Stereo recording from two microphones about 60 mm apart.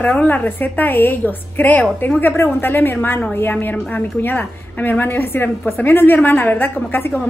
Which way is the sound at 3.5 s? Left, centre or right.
Left.